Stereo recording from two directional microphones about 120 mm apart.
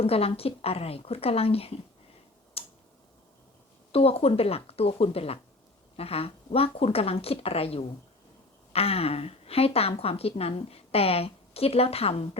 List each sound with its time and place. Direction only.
0.0 s a woman's voice: 55° left (ahead or behind)
2.6 s tick-tock: 55° left (ahead or behind)
3.9 s a woman's voice: 55° left (ahead or behind)